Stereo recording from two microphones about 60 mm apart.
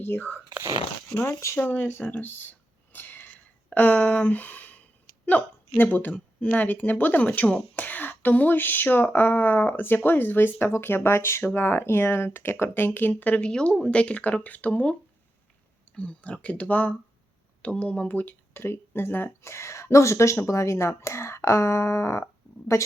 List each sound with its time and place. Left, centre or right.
0.1 s speech: left
1.1 s speech: left
1.5 s speech: left
2.2 s a sound: left
3.8 s speech: left
16.0 s speech: centre; by 19.3 s left
19.4 s a woman's voice: left